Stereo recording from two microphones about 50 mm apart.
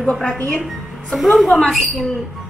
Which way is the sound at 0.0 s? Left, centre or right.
Centre.